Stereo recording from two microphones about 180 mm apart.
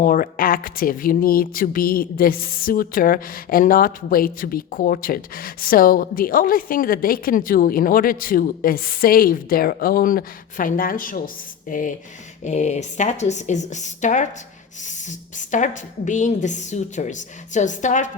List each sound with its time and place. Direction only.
0.0 s a woman's voice: 50° left (ahead or behind)